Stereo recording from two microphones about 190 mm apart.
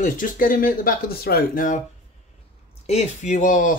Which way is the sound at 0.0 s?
45° left (ahead or behind).